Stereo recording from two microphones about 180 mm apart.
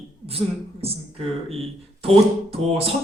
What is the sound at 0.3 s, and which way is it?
Speech, 35° right (ahead or behind).